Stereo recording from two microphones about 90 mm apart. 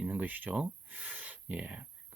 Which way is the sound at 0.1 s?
20° right (ahead or behind).